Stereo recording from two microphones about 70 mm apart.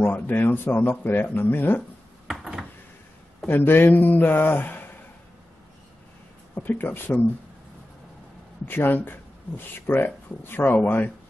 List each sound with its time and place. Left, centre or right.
0.0 s speech: left
2.2 s a sound: centre
3.4 s speech: left
6.5 s speech: left
8.6 s speech: left